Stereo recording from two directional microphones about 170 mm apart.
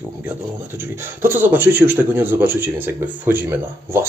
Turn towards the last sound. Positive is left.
turn(degrees=-15)  # may be behind; listen again after turning